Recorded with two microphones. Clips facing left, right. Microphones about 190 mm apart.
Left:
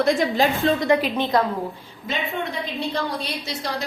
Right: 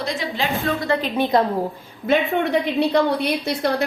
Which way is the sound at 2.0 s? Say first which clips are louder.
Right 8 dB; 65° right (ahead or behind).